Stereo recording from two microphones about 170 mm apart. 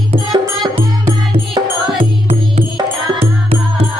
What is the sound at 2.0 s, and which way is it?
Music, 35° right (ahead or behind).